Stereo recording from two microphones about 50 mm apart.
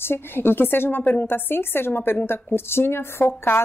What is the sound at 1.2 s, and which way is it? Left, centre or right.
A woman's voice, left.